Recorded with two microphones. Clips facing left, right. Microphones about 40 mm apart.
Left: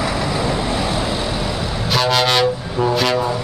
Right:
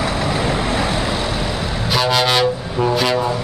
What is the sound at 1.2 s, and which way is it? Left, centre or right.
Vehicle, centre.